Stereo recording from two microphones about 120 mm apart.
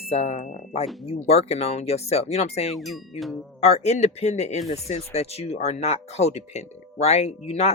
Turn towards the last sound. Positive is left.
turn(degrees=60)  # may be behind; listen again after turning